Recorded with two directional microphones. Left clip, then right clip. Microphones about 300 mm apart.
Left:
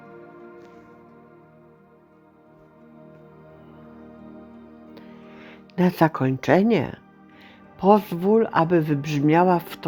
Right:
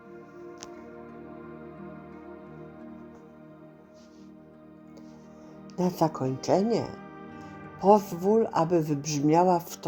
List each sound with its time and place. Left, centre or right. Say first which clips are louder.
5.7 s speech: left 6 dB; left
6.0 s speech: left 6 dB; left
6.2 s speech: left 6 dB; left